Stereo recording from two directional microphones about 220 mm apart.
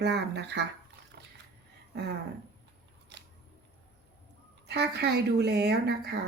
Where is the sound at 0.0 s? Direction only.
50° right (ahead or behind).